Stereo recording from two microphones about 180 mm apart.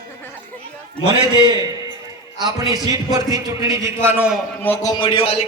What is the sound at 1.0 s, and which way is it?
Speech, 25° right (ahead or behind).